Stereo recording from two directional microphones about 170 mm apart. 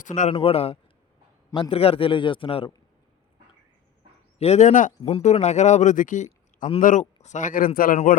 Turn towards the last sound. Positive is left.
turn(degrees=55)  # may be behind; listen again after turning